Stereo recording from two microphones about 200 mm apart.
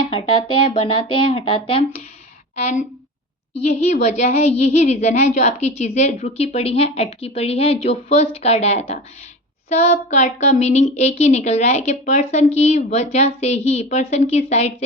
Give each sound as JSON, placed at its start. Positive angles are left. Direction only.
{"t": 0.7, "sound": "a woman's voice", "side_deg": 25}